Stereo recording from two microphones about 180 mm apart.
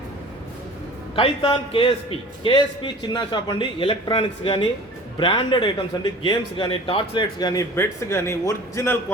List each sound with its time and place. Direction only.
1.1 s speech: 30° left (ahead or behind); by 9.1 s 15° left (ahead or behind)